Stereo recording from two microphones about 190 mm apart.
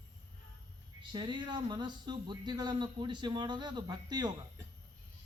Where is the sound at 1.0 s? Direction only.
25° right (ahead or behind).